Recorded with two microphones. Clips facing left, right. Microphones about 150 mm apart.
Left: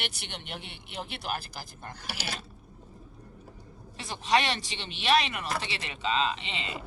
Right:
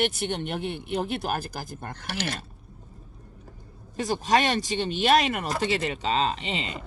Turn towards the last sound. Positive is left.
turn(degrees=-40)  # may be behind; listen again after turning